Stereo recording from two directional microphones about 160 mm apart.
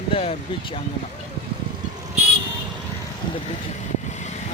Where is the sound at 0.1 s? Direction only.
40° left (ahead or behind).